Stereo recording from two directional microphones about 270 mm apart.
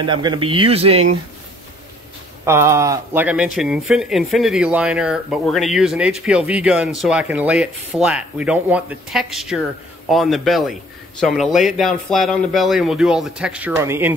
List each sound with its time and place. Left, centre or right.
0.0 s speech: centre
2.4 s speech: centre